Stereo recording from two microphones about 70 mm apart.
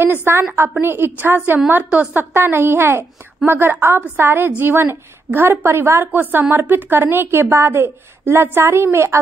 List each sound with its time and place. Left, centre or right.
0.0 s a woman's voice: right